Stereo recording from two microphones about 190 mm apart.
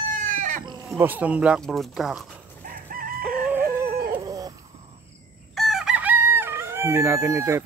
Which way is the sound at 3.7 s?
15° right (ahead or behind).